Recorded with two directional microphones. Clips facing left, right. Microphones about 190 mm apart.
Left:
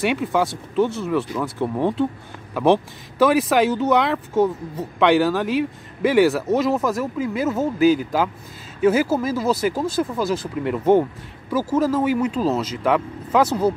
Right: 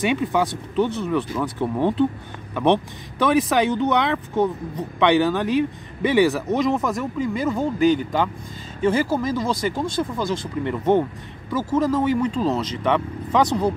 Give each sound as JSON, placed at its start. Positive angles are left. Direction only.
{"t": 0.0, "sound": "speech", "side_deg": 0}